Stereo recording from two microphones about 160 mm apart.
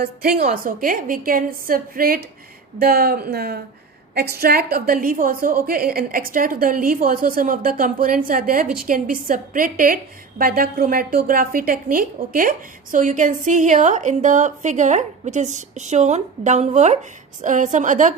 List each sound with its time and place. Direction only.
0.0 s a woman's voice: 70° right (ahead or behind); by 18.1 s 50° right (ahead or behind)